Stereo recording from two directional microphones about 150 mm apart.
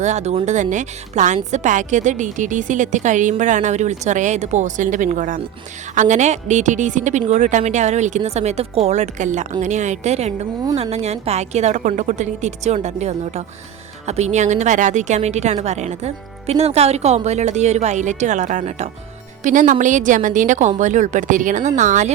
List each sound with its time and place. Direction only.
0.0 s a woman's voice: 50° right (ahead or behind)